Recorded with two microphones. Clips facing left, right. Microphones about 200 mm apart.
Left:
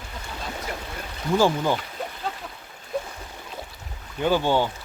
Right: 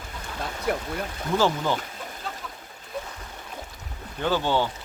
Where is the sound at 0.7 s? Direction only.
55° right (ahead or behind).